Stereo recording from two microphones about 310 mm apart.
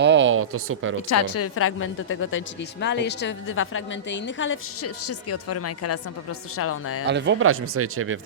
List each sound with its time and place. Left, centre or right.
0.0 s a sound: right
1.1 s a woman's voice: left
7.1 s speech: right